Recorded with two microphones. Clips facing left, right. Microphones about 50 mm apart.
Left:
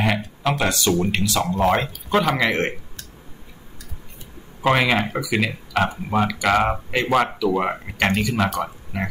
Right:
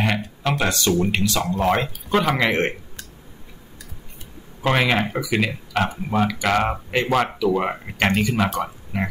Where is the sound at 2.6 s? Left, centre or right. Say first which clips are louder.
Right 1 dB; centre.